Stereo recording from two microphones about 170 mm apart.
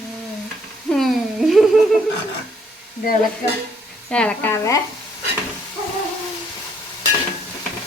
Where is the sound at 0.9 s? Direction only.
Centre (ahead or behind).